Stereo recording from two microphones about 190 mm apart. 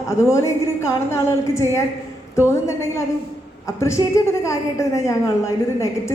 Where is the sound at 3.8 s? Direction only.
15° left (ahead or behind).